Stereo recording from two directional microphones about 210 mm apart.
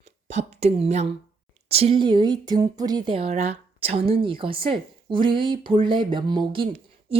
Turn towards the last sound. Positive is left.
turn(degrees=-25)  # may be behind; listen again after turning